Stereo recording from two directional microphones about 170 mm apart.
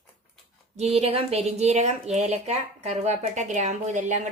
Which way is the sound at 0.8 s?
40° right (ahead or behind).